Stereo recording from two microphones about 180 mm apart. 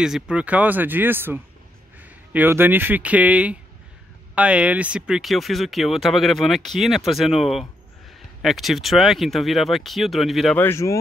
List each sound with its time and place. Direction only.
0.0 s speech: 5° right (ahead or behind)
10.6 s speech: 15° left (ahead or behind)